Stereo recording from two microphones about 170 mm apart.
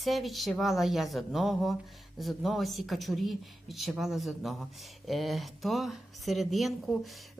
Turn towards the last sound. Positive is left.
turn(degrees=0)  # may be behind; listen again after turning